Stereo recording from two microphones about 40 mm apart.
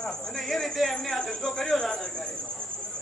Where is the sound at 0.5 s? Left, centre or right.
Centre.